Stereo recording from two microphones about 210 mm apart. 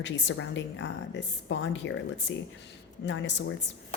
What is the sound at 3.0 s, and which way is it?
Speech, 60° left (ahead or behind).